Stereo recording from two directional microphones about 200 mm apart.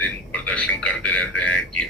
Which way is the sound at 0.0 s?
5° left (ahead or behind).